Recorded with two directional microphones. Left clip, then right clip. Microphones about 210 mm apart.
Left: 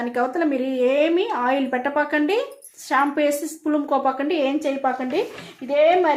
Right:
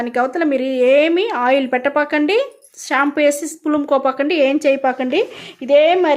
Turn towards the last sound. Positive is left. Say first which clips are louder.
# right 5 dB
turn(degrees=-55)  # may be behind; listen again after turning